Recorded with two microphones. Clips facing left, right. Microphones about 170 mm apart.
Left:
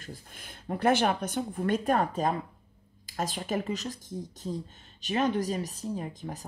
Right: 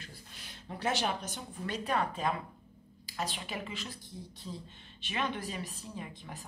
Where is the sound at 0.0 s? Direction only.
50° left (ahead or behind).